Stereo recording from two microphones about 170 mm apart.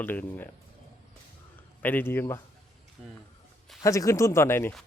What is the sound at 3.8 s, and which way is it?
Speech, 20° left (ahead or behind).